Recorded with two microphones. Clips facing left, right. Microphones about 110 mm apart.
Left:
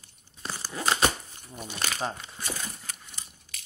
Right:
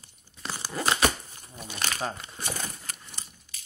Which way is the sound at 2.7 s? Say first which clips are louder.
Right 1 dB; 50° right (ahead or behind).